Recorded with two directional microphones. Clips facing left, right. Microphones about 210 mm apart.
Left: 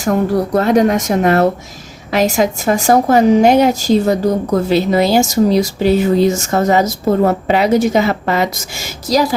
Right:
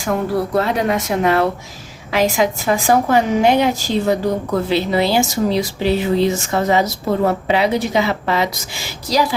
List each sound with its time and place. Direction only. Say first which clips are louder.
0.5 s a woman's voice: left 8 dB; 45° left (ahead or behind)